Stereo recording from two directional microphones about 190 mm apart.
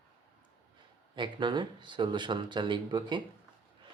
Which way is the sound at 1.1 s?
25° right (ahead or behind).